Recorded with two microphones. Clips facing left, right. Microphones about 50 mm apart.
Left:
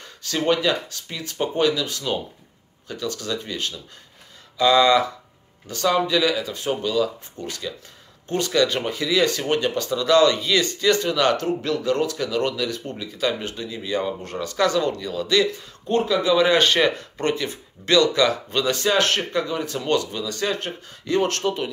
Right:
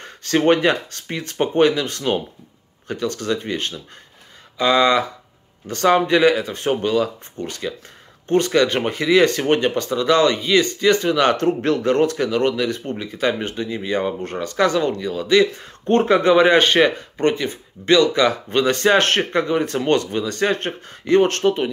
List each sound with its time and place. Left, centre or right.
0.0 s speech: right
5.7 s speech: right
15.8 s speech: right